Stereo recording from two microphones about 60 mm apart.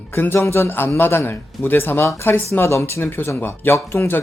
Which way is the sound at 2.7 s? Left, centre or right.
Left.